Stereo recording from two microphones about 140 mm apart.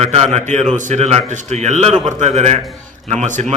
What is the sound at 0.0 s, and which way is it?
A man's voice, 50° right (ahead or behind).